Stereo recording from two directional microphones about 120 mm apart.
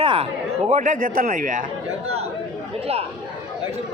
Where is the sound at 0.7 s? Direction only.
90° right.